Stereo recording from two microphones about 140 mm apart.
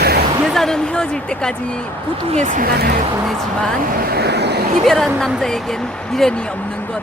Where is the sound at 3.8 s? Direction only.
85° right.